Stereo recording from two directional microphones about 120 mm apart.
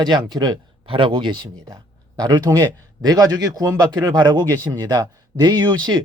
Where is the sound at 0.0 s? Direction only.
35° right (ahead or behind).